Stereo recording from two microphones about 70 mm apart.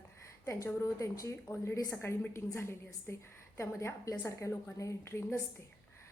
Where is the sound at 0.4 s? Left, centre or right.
Left.